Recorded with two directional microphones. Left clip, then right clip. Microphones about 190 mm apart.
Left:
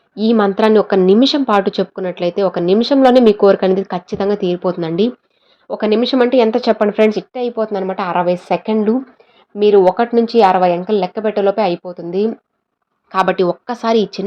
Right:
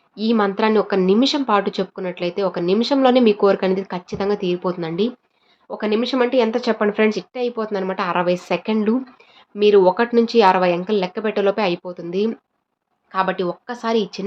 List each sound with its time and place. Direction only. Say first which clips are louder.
0.1 s a woman's voice: left 5 dB; 25° left (ahead or behind)
13.1 s a woman's voice: left 6 dB; 30° left (ahead or behind)